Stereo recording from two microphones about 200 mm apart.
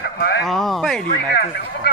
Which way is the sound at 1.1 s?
55° left (ahead or behind).